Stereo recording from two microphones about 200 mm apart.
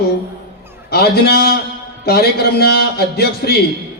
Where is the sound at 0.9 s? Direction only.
50° left (ahead or behind).